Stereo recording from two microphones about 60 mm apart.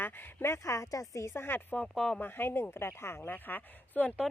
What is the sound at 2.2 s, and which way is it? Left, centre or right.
Speech, left.